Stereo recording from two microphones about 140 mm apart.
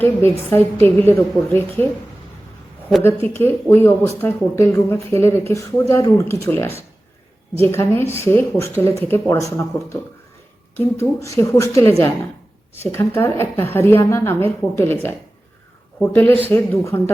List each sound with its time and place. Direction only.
0.0 s a woman's voice: 15° left (ahead or behind)
3.0 s a woman's voice: 15° left (ahead or behind)